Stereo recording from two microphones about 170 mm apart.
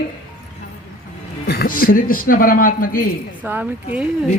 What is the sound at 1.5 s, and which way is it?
A man's voice, 65° left (ahead or behind).